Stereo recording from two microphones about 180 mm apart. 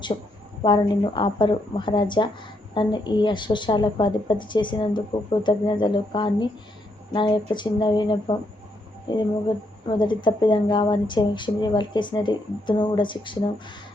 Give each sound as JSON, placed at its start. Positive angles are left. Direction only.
{"t": 0.1, "sound": "a woman's voice", "side_deg": 35}
{"t": 0.6, "sound": "speech", "side_deg": 25}